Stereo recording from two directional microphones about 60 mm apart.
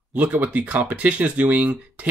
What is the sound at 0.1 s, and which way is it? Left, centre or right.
Speech, right.